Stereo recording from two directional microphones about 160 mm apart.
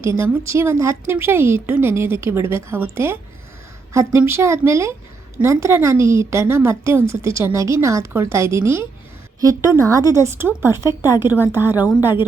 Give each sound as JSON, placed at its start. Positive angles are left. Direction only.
{"t": 0.0, "sound": "a woman's voice", "side_deg": -15}